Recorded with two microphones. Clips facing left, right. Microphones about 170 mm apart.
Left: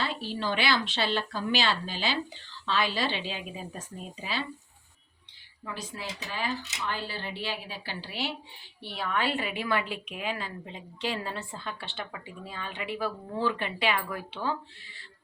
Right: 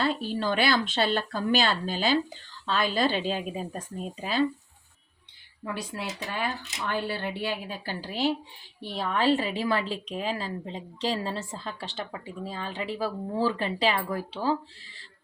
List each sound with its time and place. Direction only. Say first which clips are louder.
0.0 s speech: right 5 dB; 45° right (ahead or behind)
5.7 s a woman's voice: right 4 dB; 60° right (ahead or behind); by 14.3 s 35° right (ahead or behind)